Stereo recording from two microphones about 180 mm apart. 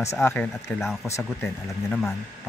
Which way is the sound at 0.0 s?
15° left (ahead or behind).